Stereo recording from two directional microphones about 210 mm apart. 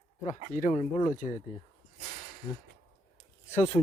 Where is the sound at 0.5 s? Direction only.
35° left (ahead or behind).